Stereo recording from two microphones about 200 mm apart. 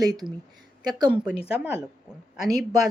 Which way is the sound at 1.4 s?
5° right (ahead or behind).